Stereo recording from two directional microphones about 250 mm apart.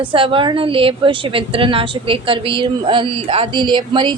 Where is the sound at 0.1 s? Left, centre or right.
Right.